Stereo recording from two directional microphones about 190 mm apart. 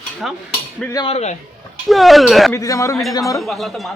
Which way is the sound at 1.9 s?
Centre (ahead or behind).